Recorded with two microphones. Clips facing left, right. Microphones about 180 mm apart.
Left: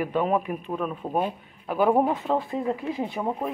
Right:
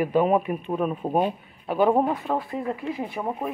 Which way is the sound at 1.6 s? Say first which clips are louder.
Right 1 dB; 5° left (ahead or behind).